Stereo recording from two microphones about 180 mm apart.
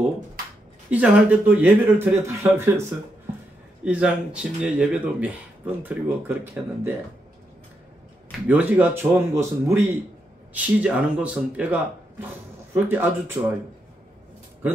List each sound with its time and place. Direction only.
0.8 s speech: 10° right (ahead or behind)
8.5 s speech: 10° right (ahead or behind)